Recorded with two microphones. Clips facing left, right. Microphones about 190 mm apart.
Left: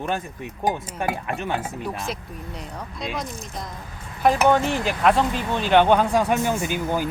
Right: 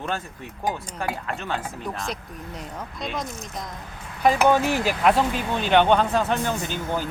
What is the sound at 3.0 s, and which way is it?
Speech, centre (ahead or behind).